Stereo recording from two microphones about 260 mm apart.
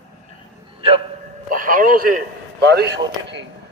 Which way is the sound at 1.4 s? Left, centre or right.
Right.